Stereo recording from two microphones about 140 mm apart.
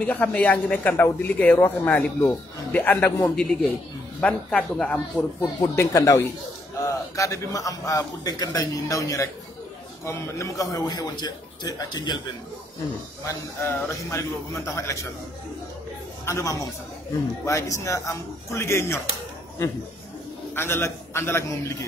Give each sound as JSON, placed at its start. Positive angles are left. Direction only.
{"t": 0.0, "sound": "speech", "side_deg": 10}
{"t": 5.6, "sound": "a man's voice", "side_deg": 25}
{"t": 13.2, "sound": "a man's voice", "side_deg": 20}
{"t": 16.3, "sound": "a man's voice", "side_deg": 20}
{"t": 20.5, "sound": "speech", "side_deg": 15}